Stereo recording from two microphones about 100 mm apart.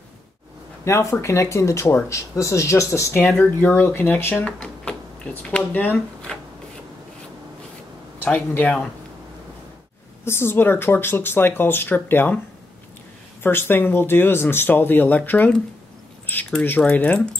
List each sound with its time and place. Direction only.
0.8 s speech: 25° left (ahead or behind)
8.2 s speech: 20° left (ahead or behind)
10.2 s speech: 25° left (ahead or behind)
13.4 s speech: 25° left (ahead or behind)